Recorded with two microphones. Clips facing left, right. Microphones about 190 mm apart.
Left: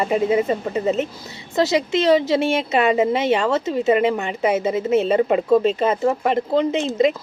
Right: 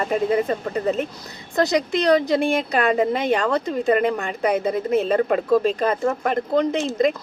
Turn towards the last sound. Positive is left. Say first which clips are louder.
# left 2 dB
turn(degrees=5)  # may be behind; listen again after turning